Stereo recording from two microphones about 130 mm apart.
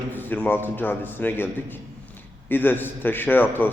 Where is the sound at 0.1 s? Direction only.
15° left (ahead or behind).